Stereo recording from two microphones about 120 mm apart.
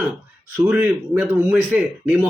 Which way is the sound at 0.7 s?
15° right (ahead or behind).